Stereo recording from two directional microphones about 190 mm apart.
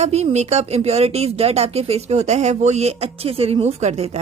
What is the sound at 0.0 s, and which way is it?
A woman's voice, 35° right (ahead or behind).